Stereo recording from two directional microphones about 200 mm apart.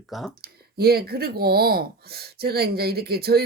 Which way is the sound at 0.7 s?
50° right (ahead or behind).